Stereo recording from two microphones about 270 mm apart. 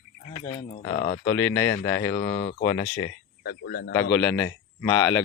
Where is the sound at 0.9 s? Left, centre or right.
Left.